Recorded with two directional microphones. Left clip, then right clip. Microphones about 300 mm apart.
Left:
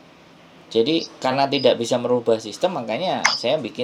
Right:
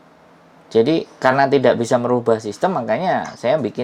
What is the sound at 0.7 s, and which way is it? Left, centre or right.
Speech, right.